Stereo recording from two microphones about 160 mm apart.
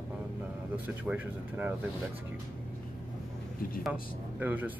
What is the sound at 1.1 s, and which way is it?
Speech, 10° right (ahead or behind).